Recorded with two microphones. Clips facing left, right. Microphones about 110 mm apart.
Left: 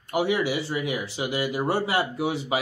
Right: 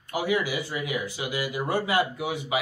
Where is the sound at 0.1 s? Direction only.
30° left (ahead or behind).